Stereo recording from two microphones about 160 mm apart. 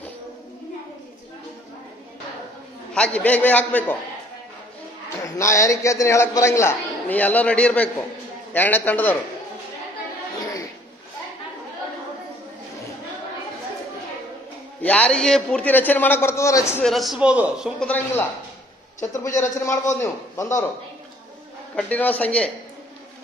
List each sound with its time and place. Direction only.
2.9 s a man's voice: 5° left (ahead or behind)
5.2 s a man's voice: 20° left (ahead or behind)
10.4 s a sound: 20° left (ahead or behind)
14.8 s a man's voice: 10° left (ahead or behind)
16.8 s a man's voice: centre (ahead or behind)
17.7 s a man's voice: 10° left (ahead or behind)
21.7 s a man's voice: 10° left (ahead or behind)